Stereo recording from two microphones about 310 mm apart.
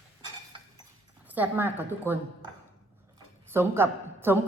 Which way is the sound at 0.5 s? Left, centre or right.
Centre.